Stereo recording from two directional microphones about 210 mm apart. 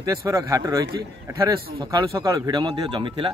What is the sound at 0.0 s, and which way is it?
A man's voice, 15° right (ahead or behind).